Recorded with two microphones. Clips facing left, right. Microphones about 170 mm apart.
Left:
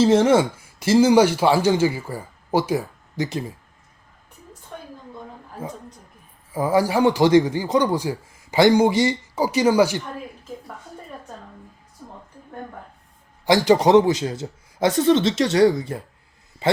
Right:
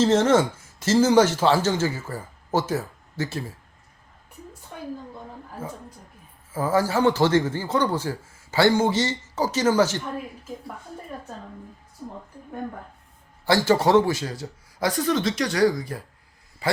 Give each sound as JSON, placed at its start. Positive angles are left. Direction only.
{"t": 0.0, "sound": "speech", "side_deg": 10}
{"t": 5.6, "sound": "a man's voice", "side_deg": 15}
{"t": 13.4, "sound": "a man's voice", "side_deg": 15}